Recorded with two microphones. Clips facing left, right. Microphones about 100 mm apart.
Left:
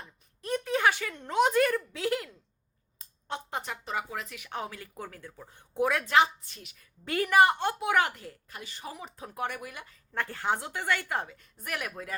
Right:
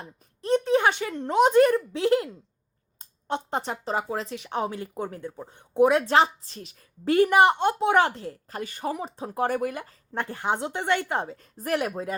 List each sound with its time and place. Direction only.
0.4 s a sound: 25° right (ahead or behind)
1.3 s speech: 25° right (ahead or behind)
6.1 s speech: 35° right (ahead or behind)
8.6 s speech: 50° right (ahead or behind)
9.0 s speech: 30° right (ahead or behind)
9.6 s speech: 45° right (ahead or behind)
10.2 s speech: 20° right (ahead or behind)
11.3 s speech: 35° right (ahead or behind)